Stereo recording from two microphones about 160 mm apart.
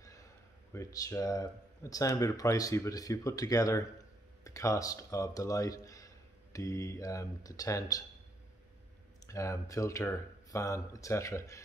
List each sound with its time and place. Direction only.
0.0 s a sound: 20° left (ahead or behind)
0.7 s speech: 20° left (ahead or behind)
9.2 s speech: 20° left (ahead or behind)